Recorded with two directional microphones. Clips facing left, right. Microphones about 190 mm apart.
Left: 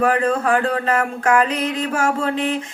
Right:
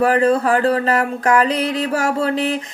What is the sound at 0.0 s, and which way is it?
Speech, 35° right (ahead or behind).